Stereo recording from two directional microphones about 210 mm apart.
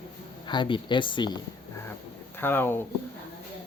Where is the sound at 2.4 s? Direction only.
10° left (ahead or behind).